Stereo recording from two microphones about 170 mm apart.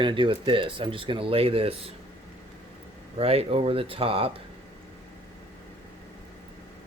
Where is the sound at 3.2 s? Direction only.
35° right (ahead or behind).